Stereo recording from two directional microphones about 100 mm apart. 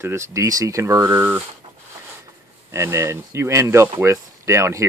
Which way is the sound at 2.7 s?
25° right (ahead or behind).